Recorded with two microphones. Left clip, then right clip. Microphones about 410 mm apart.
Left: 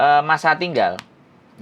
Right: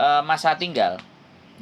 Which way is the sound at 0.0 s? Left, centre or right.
Left.